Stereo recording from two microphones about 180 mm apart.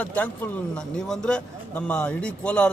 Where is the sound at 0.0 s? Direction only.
10° left (ahead or behind).